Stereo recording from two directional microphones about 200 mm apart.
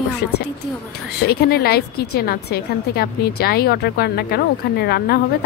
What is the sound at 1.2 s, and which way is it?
A woman's voice, 55° left (ahead or behind).